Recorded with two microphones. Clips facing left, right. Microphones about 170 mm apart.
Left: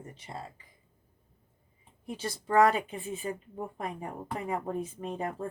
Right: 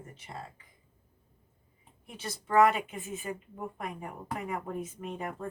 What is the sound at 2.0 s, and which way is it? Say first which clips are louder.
Speech: left 5 dB; 30° left (ahead or behind).